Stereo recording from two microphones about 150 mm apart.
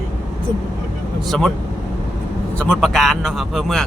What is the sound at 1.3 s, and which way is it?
Speech, 5° left (ahead or behind).